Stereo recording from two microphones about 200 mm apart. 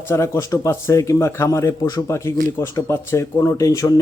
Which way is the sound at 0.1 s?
15° left (ahead or behind).